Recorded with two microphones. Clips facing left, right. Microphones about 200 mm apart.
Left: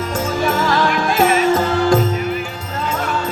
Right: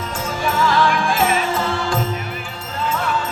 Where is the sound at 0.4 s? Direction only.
40° left (ahead or behind).